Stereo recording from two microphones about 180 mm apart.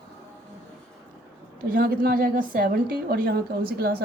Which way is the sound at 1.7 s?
55° right (ahead or behind).